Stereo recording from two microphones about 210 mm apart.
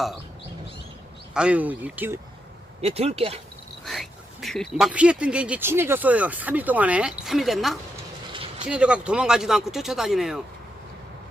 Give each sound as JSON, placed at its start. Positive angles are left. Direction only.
{"t": 1.3, "sound": "speech", "side_deg": -5}
{"t": 2.8, "sound": "speech", "side_deg": -30}
{"t": 3.8, "sound": "speech", "side_deg": 0}
{"t": 8.3, "sound": "vehicle", "side_deg": -25}
{"t": 8.6, "sound": "speech", "side_deg": -5}